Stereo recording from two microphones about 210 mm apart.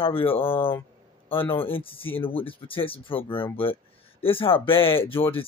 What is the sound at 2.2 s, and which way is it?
Speech, 25° left (ahead or behind).